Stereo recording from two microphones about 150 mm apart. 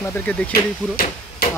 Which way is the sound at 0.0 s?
15° left (ahead or behind).